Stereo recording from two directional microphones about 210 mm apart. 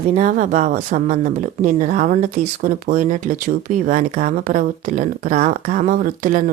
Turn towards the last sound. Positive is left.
turn(degrees=-40)  # may be behind; listen again after turning